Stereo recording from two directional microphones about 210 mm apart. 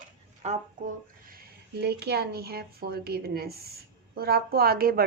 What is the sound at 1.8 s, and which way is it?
A woman's voice, 50° right (ahead or behind).